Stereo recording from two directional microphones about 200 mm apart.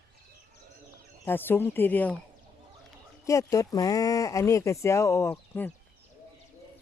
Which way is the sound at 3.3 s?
15° left (ahead or behind).